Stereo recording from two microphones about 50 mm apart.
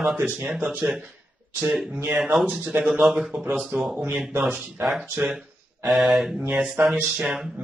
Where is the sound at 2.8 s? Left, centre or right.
Centre.